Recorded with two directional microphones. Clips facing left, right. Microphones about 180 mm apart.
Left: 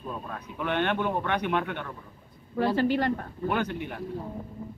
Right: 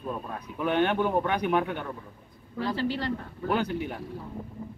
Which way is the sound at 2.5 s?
50° left (ahead or behind).